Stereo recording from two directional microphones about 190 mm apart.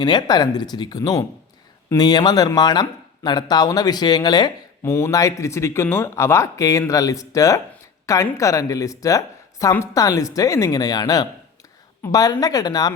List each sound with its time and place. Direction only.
0.0 s speech: 20° left (ahead or behind)